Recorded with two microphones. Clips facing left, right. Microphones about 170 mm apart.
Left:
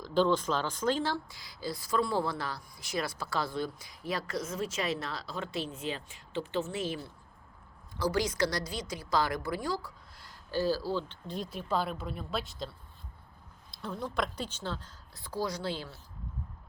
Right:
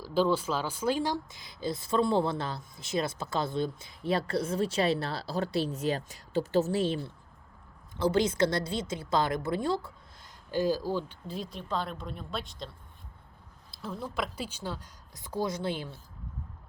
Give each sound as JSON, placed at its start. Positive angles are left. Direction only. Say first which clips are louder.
{"t": 0.0, "sound": "speech", "louder": "even", "side_deg": -10}